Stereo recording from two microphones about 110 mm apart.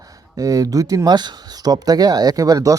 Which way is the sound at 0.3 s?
35° right (ahead or behind).